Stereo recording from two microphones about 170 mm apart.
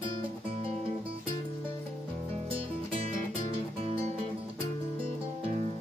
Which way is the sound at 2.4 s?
35° right (ahead or behind).